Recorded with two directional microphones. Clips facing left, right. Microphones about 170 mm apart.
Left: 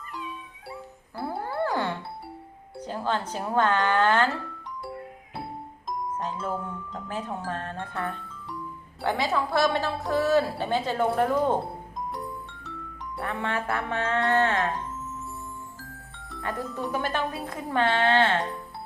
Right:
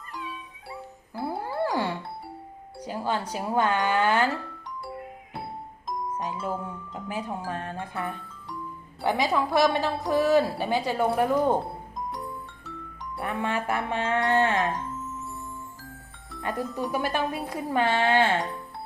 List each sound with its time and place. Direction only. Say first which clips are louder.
1.2 s music: even; 10° right (ahead or behind)
2.8 s speech: even; 10° right (ahead or behind)
6.1 s speech: even; 10° right (ahead or behind)
13.2 s speech: right 1 dB; 15° right (ahead or behind)
16.4 s speech: right 2 dB; 20° right (ahead or behind)